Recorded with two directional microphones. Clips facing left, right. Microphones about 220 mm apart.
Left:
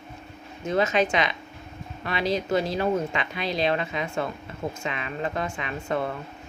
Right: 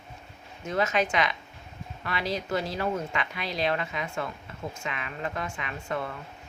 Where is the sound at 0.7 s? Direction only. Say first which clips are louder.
Left 4 dB; 25° left (ahead or behind).